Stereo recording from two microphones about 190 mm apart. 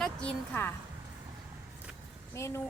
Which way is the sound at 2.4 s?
15° left (ahead or behind).